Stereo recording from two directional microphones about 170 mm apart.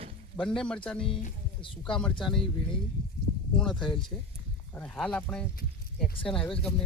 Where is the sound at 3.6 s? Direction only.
5° left (ahead or behind).